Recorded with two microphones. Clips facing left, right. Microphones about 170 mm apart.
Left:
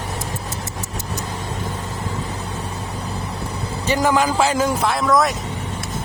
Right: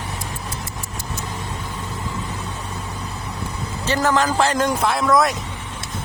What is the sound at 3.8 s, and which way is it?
Speech, 10° left (ahead or behind).